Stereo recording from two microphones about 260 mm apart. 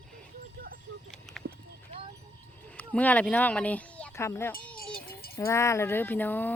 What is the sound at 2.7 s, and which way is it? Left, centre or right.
Speech, centre.